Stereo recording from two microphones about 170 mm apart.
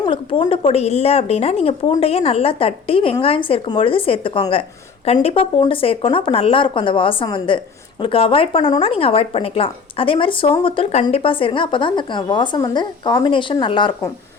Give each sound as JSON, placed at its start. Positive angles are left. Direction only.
{"t": 0.0, "sound": "speech", "side_deg": 30}